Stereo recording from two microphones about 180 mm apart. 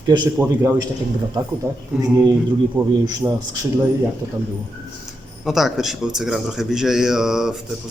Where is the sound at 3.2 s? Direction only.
20° right (ahead or behind).